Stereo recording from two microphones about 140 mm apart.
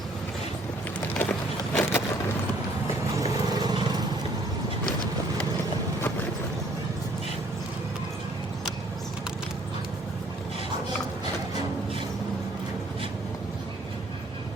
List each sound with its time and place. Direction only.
1.1 s wood: 10° left (ahead or behind)
3.6 s vehicle: 30° right (ahead or behind)